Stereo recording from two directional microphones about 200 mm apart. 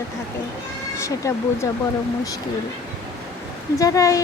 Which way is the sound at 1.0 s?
15° left (ahead or behind).